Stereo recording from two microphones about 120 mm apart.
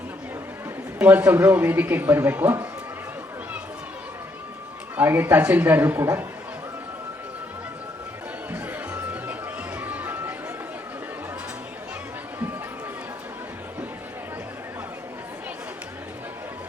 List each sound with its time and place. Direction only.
0.9 s speech: 15° right (ahead or behind)
4.9 s speech: 15° right (ahead or behind)
8.5 s music: 15° right (ahead or behind)